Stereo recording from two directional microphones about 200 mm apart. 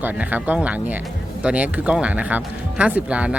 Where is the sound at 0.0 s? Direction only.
10° right (ahead or behind).